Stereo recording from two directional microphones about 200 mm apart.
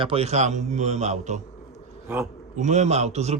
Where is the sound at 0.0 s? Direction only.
30° right (ahead or behind).